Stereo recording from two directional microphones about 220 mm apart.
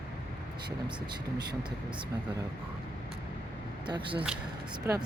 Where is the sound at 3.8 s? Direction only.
20° right (ahead or behind).